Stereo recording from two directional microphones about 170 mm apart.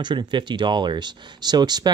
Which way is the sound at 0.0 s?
25° right (ahead or behind).